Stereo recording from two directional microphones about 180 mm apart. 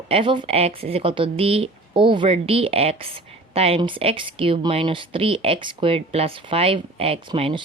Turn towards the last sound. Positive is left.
turn(degrees=-30)  # may be behind; listen again after turning